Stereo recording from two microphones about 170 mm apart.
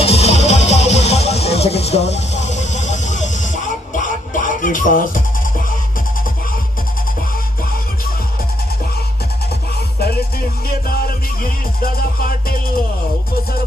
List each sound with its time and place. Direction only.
0.0 s music: 40° left (ahead or behind)
10.7 s music: 60° left (ahead or behind)